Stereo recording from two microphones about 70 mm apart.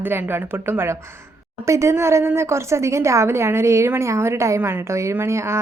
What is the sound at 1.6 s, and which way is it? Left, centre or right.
A woman's voice, right.